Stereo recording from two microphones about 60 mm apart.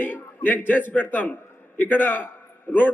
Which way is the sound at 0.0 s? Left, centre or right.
Left.